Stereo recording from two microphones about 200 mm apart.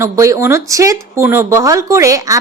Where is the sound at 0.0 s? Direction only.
15° right (ahead or behind).